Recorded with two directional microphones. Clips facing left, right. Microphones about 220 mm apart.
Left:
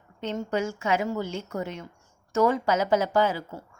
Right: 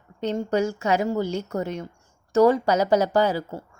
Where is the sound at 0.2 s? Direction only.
40° right (ahead or behind).